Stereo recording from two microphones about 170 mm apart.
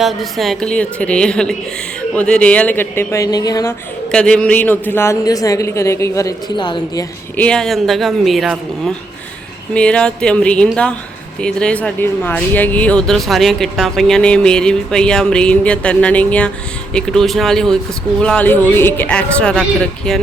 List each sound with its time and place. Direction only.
0.0 s a man's voice: centre (ahead or behind); by 3.8 s 20° left (ahead or behind)
4.1 s a man's voice: 5° left (ahead or behind); by 7.0 s 25° left (ahead or behind)
7.3 s a man's voice: 5° left (ahead or behind)